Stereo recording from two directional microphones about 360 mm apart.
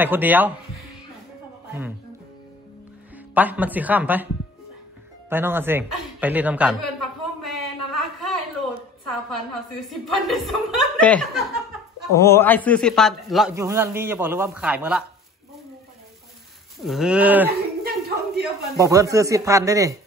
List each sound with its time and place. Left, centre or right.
0.0 s a man's voice: centre
3.3 s a man's voice: centre
5.3 s a man's voice: centre
7.9 s a sound: centre
9.5 s a man's voice: centre
16.8 s a man's voice: centre
17.5 s a sound: right
18.8 s speech: centre